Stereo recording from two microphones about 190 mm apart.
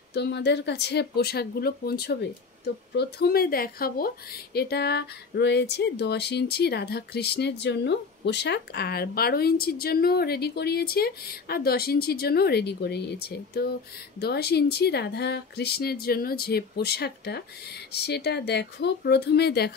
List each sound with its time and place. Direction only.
0.1 s speech: 60° left (ahead or behind)